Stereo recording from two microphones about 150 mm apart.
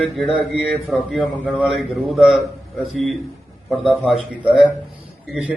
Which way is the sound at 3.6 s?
5° right (ahead or behind).